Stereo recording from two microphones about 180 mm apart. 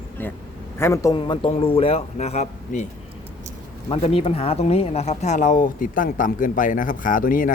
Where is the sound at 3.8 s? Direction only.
30° left (ahead or behind); by 7.5 s 50° left (ahead or behind).